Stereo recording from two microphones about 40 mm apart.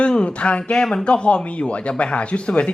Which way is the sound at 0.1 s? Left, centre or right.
Left.